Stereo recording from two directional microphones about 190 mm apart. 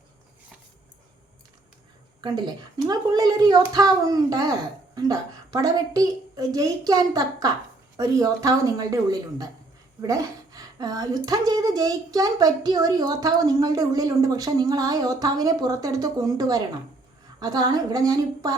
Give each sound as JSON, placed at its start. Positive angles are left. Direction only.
{"t": 2.8, "sound": "a woman's voice", "side_deg": -20}